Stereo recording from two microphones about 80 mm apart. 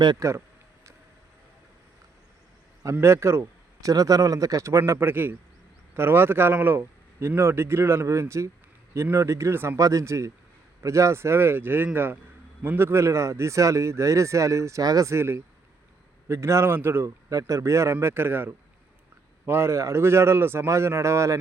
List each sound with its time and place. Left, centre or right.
0.2 s speech: right
2.8 s speech: right
4.9 s speech: right
15.1 s speech: right
17.2 s speech: right